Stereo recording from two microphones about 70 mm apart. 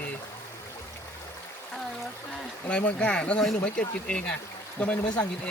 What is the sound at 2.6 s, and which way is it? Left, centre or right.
Speech, centre.